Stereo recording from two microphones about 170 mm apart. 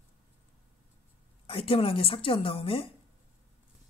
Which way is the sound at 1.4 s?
35° left (ahead or behind).